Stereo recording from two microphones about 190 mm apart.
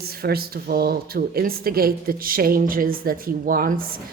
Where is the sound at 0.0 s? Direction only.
55° right (ahead or behind).